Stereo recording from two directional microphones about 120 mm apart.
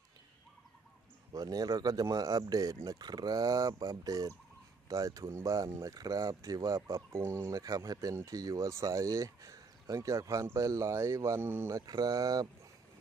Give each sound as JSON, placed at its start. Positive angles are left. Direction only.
{"t": 1.3, "sound": "speech", "side_deg": -30}
{"t": 11.8, "sound": "speech", "side_deg": -35}